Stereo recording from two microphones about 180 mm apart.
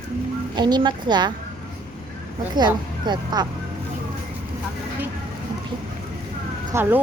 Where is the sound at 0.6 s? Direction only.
25° right (ahead or behind).